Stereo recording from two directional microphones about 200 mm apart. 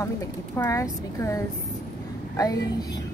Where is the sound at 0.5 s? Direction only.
15° left (ahead or behind).